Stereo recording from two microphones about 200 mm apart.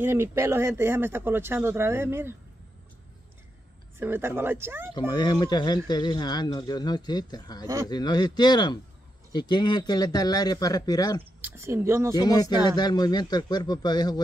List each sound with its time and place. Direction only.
0.0 s speech: 10° right (ahead or behind)
4.0 s speech: 10° right (ahead or behind)
4.9 s speech: 20° left (ahead or behind)
11.4 s speech: 15° right (ahead or behind)
12.1 s speech: 20° left (ahead or behind)